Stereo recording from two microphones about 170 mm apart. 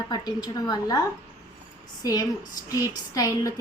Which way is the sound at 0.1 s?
25° left (ahead or behind).